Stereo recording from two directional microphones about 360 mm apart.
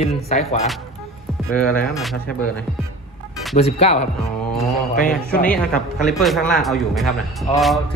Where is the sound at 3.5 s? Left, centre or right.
Centre.